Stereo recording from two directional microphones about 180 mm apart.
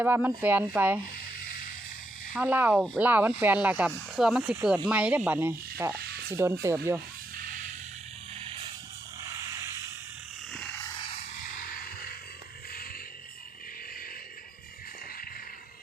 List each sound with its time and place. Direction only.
0.0 s speech: 10° right (ahead or behind)
2.3 s speech: 10° right (ahead or behind)
2.7 s speech: 5° left (ahead or behind)
3.0 s speech: 10° right (ahead or behind)
6.0 s a sound: 60° right (ahead or behind)
6.3 s speech: 15° right (ahead or behind)
11.7 s a sound: 55° left (ahead or behind)